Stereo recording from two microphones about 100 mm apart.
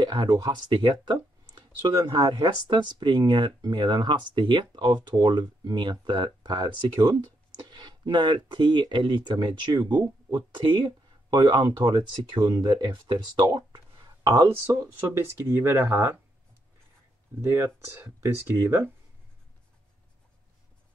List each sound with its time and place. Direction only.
0.0 s speech: 50° right (ahead or behind)
13.5 s a sound: 45° right (ahead or behind)
14.7 s speech: 30° right (ahead or behind)
17.4 s speech: 25° right (ahead or behind)